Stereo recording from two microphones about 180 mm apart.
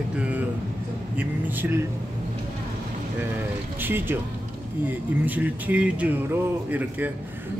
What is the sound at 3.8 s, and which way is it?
A man's voice, 10° right (ahead or behind).